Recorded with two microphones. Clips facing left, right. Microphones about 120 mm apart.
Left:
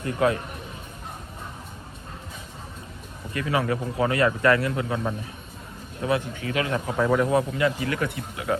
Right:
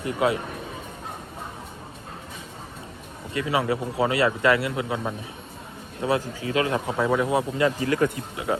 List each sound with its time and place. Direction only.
0.0 s speech: 20° right (ahead or behind)
3.3 s speech: 25° right (ahead or behind)
6.0 s speech: 30° right (ahead or behind)
6.9 s speech: 5° right (ahead or behind)
7.3 s speech: 25° right (ahead or behind)